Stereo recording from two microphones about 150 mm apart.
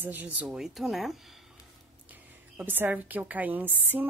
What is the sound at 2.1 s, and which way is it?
A woman's voice, 10° right (ahead or behind).